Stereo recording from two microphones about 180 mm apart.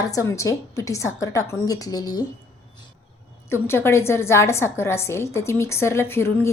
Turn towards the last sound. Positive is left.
turn(degrees=15)  # may be behind; listen again after turning